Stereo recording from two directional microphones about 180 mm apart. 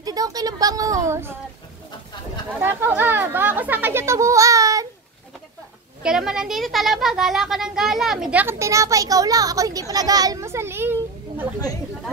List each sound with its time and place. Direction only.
0.0 s speech: 20° right (ahead or behind)
2.6 s a child's voice: 10° right (ahead or behind)
6.0 s a child's voice: 5° right (ahead or behind)